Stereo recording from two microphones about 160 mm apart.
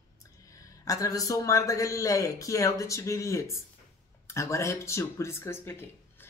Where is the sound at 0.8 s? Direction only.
20° left (ahead or behind).